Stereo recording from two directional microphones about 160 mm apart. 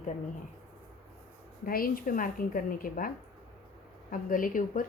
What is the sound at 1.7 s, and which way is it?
A woman's voice, 65° left (ahead or behind).